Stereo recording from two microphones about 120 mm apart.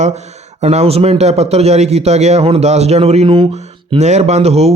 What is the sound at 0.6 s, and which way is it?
Speech, 60° right (ahead or behind).